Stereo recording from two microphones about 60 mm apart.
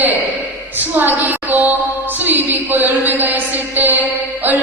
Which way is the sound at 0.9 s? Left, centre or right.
Right.